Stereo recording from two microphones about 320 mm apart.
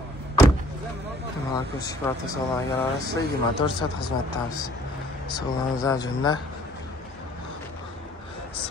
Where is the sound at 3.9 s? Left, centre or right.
Left.